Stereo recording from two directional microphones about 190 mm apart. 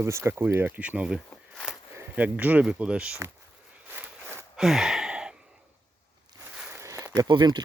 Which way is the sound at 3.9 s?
10° right (ahead or behind).